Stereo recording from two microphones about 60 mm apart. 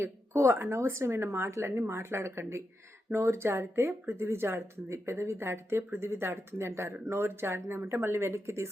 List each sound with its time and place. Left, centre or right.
0.0 s speech: right